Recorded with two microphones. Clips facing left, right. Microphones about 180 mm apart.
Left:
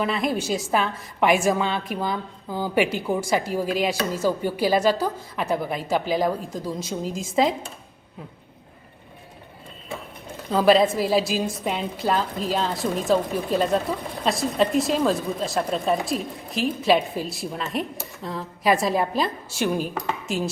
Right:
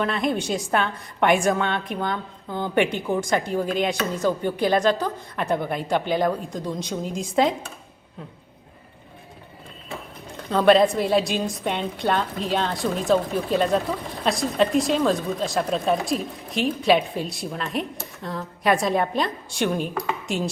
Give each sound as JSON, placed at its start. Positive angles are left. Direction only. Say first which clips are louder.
{"t": 0.0, "sound": "a woman's voice", "louder": "even", "side_deg": 0}
{"t": 10.5, "sound": "a woman's voice", "louder": "right 1 dB", "side_deg": 0}